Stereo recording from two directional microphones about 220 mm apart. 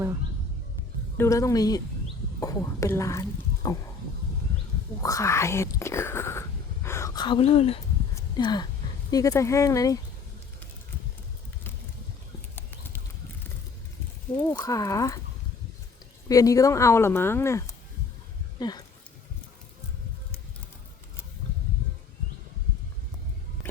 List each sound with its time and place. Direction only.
1.1 s speech: 10° left (ahead or behind)
5.0 s speech: 15° left (ahead or behind)
14.6 s speech: 15° left (ahead or behind)
16.3 s speech: 15° left (ahead or behind)